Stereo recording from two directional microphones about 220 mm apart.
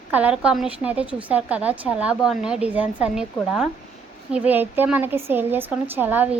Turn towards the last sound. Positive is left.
turn(degrees=-10)  # may be behind; listen again after turning